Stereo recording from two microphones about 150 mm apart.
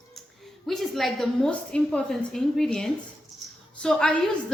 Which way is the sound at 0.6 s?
Centre (ahead or behind).